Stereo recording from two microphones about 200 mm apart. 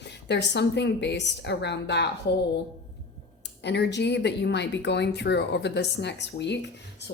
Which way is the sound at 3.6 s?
60° left (ahead or behind).